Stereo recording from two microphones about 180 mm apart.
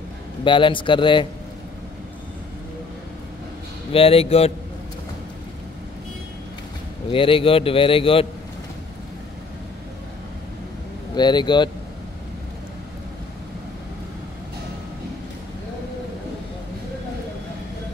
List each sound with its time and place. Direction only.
0.4 s a man's voice: 25° left (ahead or behind)
3.9 s a man's voice: 30° left (ahead or behind)
7.1 s a man's voice: 30° left (ahead or behind)
11.1 s a man's voice: 25° left (ahead or behind)